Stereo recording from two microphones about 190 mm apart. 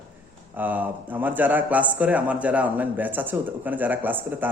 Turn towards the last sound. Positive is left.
turn(degrees=-10)  # may be behind; listen again after turning